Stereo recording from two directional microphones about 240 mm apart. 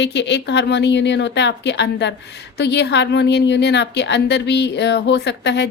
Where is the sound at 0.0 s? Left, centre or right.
Left.